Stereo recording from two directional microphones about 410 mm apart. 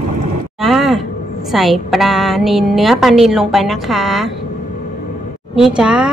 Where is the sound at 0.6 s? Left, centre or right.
Centre.